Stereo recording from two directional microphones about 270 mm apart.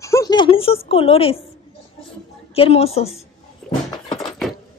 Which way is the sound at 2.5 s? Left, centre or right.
Left.